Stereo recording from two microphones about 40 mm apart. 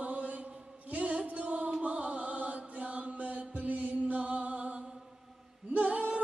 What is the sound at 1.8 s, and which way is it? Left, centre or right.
Mantra, right.